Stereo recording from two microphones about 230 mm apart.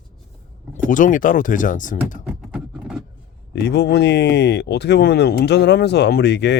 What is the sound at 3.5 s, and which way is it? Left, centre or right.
Speech, left.